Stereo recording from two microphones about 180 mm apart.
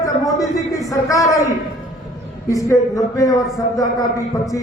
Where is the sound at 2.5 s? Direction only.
20° left (ahead or behind).